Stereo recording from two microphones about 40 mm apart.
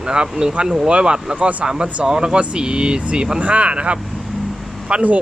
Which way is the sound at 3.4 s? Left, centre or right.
Right.